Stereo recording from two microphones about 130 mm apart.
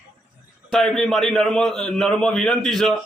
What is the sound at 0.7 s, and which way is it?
A man's voice, centre (ahead or behind).